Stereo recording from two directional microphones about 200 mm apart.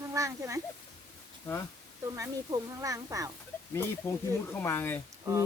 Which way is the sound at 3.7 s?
10° left (ahead or behind).